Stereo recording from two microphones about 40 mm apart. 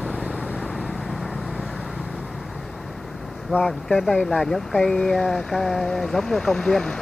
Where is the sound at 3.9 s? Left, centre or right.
Centre.